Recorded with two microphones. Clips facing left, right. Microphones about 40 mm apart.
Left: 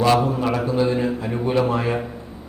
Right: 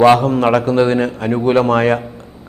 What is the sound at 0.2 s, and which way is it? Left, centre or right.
A man's voice, right.